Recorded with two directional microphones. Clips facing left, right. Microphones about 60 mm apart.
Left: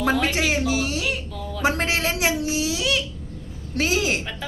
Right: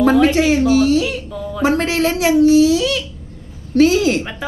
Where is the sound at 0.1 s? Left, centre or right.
Right.